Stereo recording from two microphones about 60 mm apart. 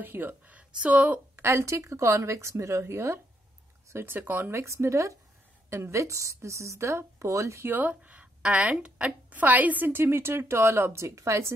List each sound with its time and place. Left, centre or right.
0.0 s a woman's voice: right
1.3 s a woman's voice: right
3.9 s speech: right
4.5 s a woman's voice: right
7.6 s a woman's voice: right
7.9 s a sound: right
8.5 s a woman's voice: right